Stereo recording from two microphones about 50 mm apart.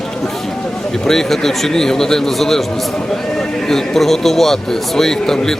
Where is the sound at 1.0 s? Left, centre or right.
Centre.